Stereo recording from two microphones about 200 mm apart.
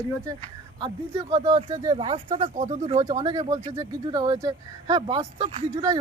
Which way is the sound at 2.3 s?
40° right (ahead or behind).